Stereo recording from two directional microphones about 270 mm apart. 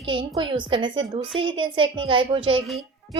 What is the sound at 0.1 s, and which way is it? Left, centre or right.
A woman's voice, centre.